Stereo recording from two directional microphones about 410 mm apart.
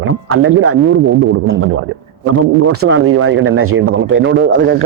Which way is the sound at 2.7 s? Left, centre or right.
Right.